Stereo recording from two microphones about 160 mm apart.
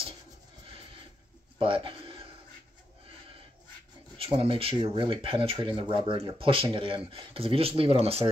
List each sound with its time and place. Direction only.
1.6 s speech: 30° right (ahead or behind)
4.2 s speech: 35° right (ahead or behind)